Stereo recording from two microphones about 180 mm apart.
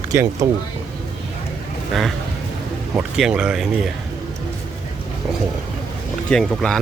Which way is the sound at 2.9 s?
5° right (ahead or behind).